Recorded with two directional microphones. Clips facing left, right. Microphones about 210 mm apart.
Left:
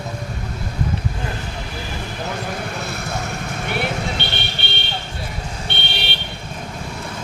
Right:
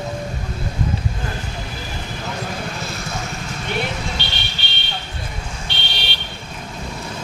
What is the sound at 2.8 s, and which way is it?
Vehicle, 60° left (ahead or behind).